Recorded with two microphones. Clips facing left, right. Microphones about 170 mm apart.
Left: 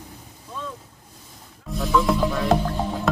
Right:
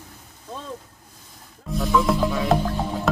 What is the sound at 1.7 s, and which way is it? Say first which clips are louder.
Music: even; centre (ahead or behind).